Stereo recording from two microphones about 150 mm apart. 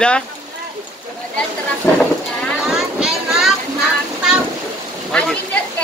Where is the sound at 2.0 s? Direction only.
Centre (ahead or behind).